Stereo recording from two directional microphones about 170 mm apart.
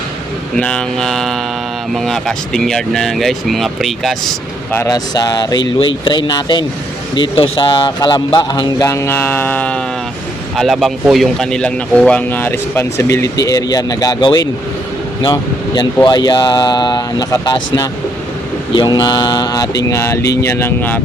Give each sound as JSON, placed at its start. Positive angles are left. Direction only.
{"t": 0.5, "sound": "speech", "side_deg": 5}
{"t": 4.7, "sound": "a man's voice", "side_deg": 15}
{"t": 18.7, "sound": "a man's voice", "side_deg": 25}